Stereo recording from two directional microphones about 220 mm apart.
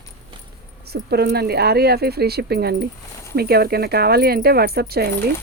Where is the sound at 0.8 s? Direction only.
45° right (ahead or behind).